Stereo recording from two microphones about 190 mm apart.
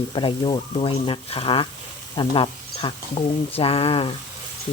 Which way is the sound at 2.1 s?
25° left (ahead or behind).